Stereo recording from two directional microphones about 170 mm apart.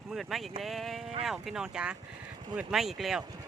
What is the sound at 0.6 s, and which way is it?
Speech, centre (ahead or behind).